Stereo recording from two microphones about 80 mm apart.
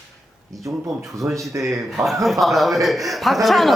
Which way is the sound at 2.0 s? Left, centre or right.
Centre.